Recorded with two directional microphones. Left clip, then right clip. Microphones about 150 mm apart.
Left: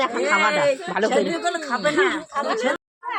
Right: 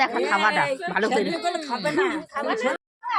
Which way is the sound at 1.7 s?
Centre (ahead or behind).